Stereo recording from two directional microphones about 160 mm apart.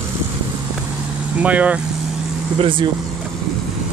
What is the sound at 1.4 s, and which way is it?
Speech, 10° right (ahead or behind).